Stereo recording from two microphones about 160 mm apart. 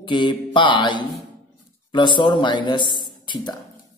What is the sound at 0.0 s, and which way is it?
A man's voice, 30° left (ahead or behind).